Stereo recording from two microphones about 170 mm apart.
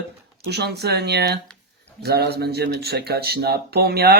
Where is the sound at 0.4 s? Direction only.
75° right (ahead or behind).